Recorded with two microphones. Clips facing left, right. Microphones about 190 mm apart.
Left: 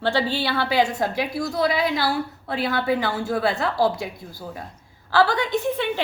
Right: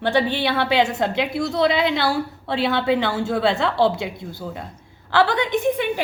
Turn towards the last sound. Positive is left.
turn(degrees=-15)  # may be behind; listen again after turning